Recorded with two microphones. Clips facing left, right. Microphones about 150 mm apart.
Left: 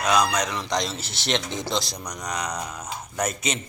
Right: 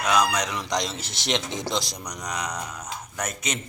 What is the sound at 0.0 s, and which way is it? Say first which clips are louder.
Speech: left 1 dB; 5° right (ahead or behind).